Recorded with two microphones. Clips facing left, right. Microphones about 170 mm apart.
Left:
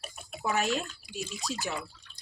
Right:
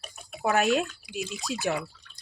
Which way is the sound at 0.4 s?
60° right (ahead or behind).